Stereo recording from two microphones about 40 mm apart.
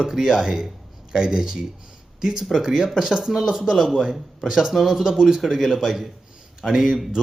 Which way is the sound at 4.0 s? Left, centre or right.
Centre.